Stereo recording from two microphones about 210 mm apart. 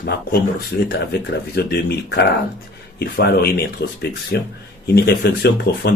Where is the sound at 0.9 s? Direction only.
50° left (ahead or behind).